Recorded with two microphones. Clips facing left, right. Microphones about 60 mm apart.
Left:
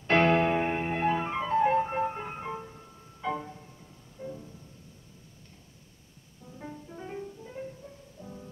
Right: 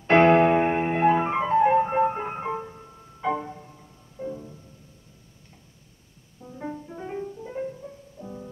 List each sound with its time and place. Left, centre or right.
0.0 s music: right
6.4 s music: right